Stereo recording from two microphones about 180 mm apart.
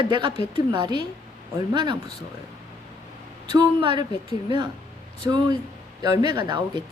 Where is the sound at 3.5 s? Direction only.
25° right (ahead or behind).